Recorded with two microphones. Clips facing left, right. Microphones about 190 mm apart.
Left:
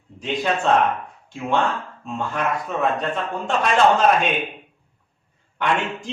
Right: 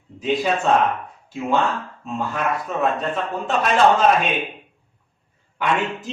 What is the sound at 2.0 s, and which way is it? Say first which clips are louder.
A man's voice: right 1 dB; centre (ahead or behind).